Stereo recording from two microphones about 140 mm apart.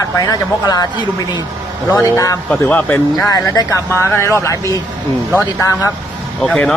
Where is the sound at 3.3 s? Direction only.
25° left (ahead or behind).